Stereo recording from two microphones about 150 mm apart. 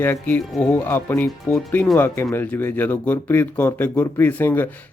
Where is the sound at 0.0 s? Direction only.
15° left (ahead or behind).